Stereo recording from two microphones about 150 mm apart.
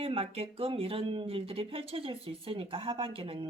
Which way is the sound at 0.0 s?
40° right (ahead or behind).